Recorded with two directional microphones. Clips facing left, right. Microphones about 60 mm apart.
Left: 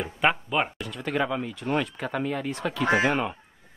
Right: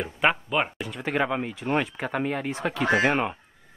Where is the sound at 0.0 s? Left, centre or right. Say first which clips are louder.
Right 1 dB; centre.